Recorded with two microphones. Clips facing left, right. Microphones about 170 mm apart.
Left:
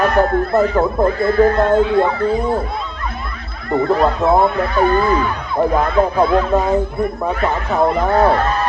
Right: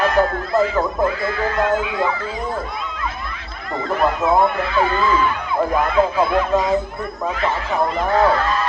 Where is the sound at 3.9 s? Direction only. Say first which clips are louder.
Left 2 dB; 35° left (ahead or behind).